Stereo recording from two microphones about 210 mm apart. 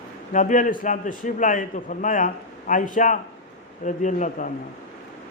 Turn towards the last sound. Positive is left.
turn(degrees=35)  # may be behind; listen again after turning